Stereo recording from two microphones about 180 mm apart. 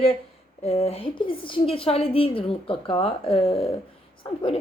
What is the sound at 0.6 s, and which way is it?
A woman's voice, 35° left (ahead or behind).